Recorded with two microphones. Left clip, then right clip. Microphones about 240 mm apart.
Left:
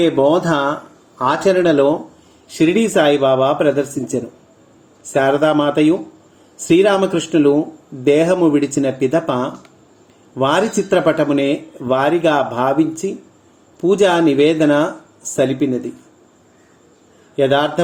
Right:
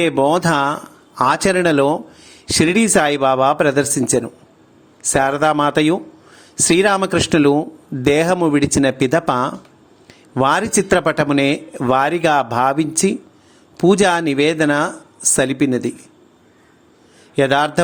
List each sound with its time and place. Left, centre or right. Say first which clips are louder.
0.0 s speech: left 1 dB; right
17.3 s speech: even; right